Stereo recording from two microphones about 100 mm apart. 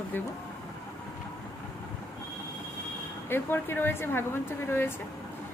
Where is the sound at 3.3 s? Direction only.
20° left (ahead or behind).